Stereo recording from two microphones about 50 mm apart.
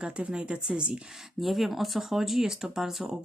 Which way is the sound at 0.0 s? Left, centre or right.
Right.